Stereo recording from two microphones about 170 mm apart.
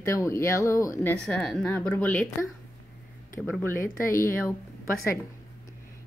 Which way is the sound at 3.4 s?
5° left (ahead or behind).